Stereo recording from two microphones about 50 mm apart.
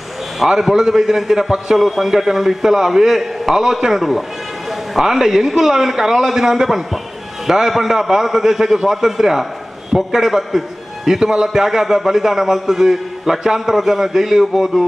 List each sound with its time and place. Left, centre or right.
0.4 s a man's voice: centre